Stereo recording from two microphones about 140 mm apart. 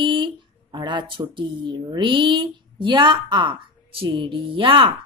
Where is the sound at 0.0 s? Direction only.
35° right (ahead or behind).